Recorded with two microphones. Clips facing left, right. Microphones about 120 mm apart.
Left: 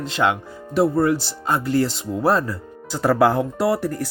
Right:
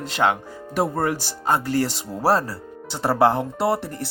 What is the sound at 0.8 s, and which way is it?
Speech, 50° right (ahead or behind).